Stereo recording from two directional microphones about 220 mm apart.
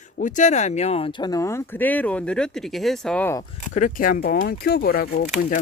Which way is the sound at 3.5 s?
35° left (ahead or behind).